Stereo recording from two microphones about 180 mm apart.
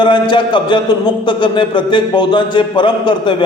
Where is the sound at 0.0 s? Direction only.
25° left (ahead or behind).